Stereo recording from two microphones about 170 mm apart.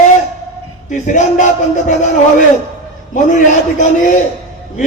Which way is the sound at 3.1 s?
45° left (ahead or behind).